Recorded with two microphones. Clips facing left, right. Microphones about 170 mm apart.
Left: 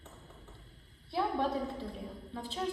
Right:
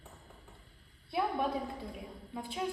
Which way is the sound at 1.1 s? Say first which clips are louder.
Left 1 dB; centre (ahead or behind).